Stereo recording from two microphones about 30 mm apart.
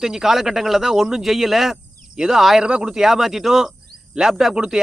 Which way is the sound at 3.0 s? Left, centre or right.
Centre.